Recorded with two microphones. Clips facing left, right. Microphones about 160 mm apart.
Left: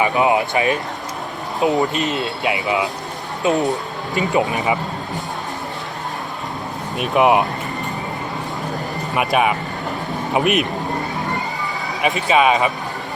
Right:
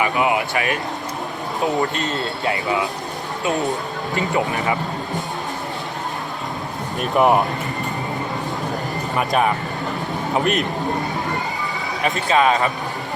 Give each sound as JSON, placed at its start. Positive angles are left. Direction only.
{"t": 0.0, "sound": "speech", "side_deg": 25}
{"t": 7.0, "sound": "speech", "side_deg": 5}
{"t": 9.1, "sound": "speech", "side_deg": 10}
{"t": 12.0, "sound": "speech", "side_deg": 15}